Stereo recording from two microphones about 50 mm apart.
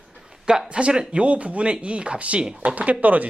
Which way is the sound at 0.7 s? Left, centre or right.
Right.